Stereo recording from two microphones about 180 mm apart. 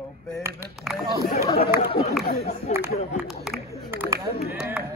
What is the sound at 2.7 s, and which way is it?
Speech, 40° left (ahead or behind).